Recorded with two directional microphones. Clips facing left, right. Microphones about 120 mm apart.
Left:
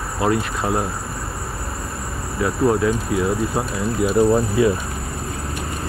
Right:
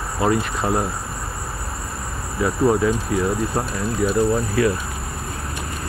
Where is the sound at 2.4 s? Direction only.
Centre (ahead or behind).